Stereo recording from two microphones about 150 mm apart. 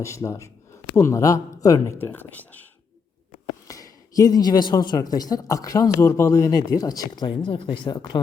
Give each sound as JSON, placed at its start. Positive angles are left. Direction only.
{"t": 0.0, "sound": "speech", "side_deg": 20}
{"t": 3.7, "sound": "speech", "side_deg": 25}